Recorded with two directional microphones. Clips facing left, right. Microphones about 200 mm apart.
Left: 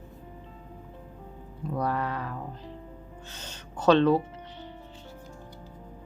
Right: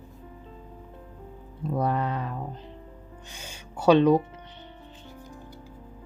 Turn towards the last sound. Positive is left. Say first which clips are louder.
# right 2 dB
turn(degrees=-15)  # may be behind; listen again after turning